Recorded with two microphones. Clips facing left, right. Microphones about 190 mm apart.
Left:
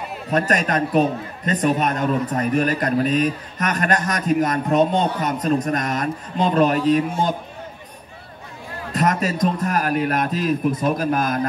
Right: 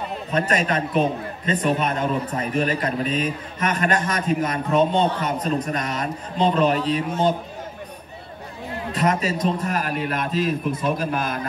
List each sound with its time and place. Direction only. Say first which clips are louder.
0.3 s a man's voice: left 2 dB; 45° left (ahead or behind)
8.9 s a man's voice: left 2 dB; 45° left (ahead or behind)